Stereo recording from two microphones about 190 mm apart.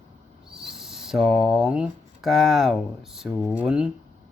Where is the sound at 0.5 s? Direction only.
Centre (ahead or behind).